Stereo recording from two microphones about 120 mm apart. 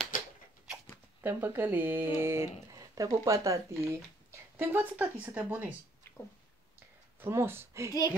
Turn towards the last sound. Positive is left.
turn(degrees=-20)  # may be behind; listen again after turning